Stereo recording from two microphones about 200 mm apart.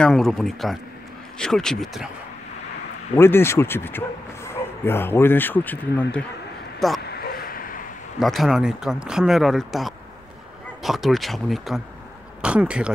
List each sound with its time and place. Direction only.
0.0 s speech: centre (ahead or behind)
3.2 s speech: 10° left (ahead or behind)
7.1 s a sound: 50° left (ahead or behind)
8.2 s speech: centre (ahead or behind)